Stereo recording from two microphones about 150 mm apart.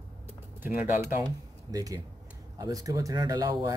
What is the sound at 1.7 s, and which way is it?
Speech, 25° right (ahead or behind).